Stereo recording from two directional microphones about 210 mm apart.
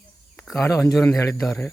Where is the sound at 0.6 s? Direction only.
15° left (ahead or behind).